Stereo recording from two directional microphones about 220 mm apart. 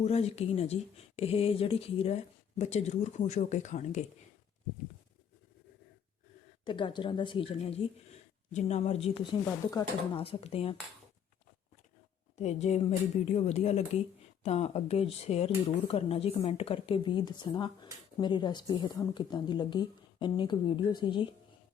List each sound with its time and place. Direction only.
0.0 s speech: 30° left (ahead or behind)
6.7 s speech: 20° left (ahead or behind)
12.4 s speech: 30° left (ahead or behind)